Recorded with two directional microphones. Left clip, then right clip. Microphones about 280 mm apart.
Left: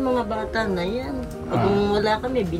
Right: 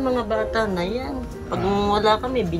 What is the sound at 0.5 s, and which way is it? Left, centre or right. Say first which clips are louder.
A woman's voice: right 1 dB; centre.